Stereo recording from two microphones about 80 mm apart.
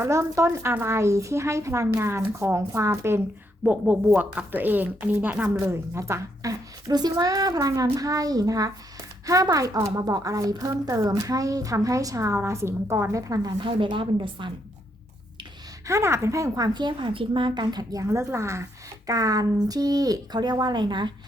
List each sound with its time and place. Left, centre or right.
0.0 s a woman's voice: right
3.6 s a woman's voice: right
5.6 s speech: right
6.9 s a child's voice: right
13.1 s a child's voice: right
13.6 s a woman's voice: right
15.9 s a woman's voice: right
16.6 s speech: right
18.0 s a woman's voice: right
19.0 s speech: right